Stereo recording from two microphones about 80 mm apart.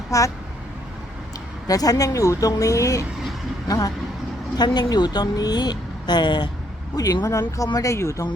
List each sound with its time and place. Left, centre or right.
0.1 s speech: left
1.6 s speech: left
4.5 s a woman's voice: left
6.9 s speech: left